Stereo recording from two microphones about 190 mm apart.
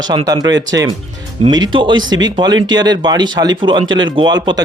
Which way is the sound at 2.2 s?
20° right (ahead or behind).